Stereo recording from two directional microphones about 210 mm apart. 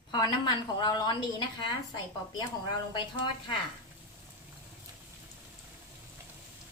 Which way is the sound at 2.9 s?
20° left (ahead or behind).